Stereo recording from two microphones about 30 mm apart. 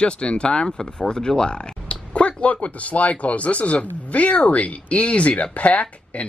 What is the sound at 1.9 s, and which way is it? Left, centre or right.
Speech, left.